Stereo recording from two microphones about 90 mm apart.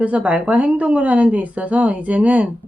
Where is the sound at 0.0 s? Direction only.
15° right (ahead or behind).